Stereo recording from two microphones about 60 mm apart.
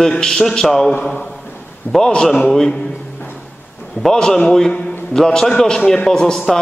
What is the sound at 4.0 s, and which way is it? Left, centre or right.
A man's voice, centre.